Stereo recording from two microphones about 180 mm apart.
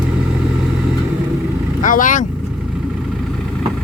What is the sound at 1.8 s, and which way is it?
Vehicle, 45° left (ahead or behind).